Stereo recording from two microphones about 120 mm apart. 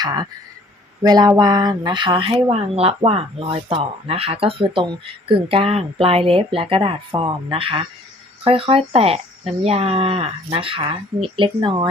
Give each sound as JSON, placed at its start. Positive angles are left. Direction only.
{"t": 0.0, "sound": "speech", "side_deg": -35}